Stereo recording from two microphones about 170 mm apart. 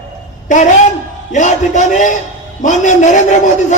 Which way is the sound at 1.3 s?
45° left (ahead or behind).